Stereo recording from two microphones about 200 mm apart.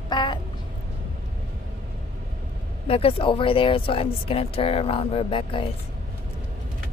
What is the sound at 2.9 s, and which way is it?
Speech, 30° left (ahead or behind).